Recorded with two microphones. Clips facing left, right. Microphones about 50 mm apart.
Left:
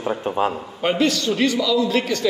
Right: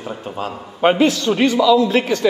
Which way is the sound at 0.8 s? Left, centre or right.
Right.